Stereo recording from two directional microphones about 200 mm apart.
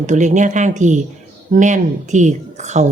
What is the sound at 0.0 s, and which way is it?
A woman's voice, 40° right (ahead or behind).